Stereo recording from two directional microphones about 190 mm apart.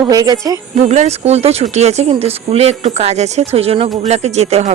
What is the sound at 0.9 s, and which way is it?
Speech, 35° right (ahead or behind).